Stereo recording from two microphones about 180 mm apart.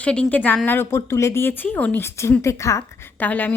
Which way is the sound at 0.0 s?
5° left (ahead or behind).